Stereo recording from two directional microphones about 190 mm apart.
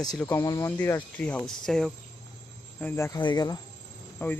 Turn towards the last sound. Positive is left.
turn(degrees=10)  # may be behind; listen again after turning